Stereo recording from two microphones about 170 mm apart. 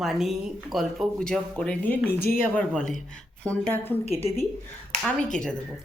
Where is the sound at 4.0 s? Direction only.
35° left (ahead or behind).